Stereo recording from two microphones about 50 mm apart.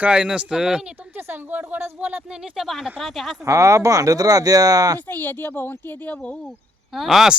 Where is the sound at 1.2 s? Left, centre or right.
Right.